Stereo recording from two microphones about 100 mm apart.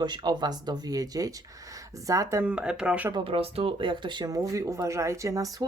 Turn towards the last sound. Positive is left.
turn(degrees=-35)  # may be behind; listen again after turning